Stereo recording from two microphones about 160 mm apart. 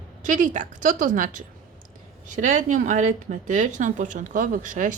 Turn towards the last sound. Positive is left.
turn(degrees=-55)  # may be behind; listen again after turning